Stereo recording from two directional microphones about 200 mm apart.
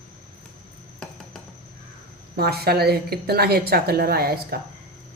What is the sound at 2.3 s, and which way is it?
A woman's voice, 50° right (ahead or behind).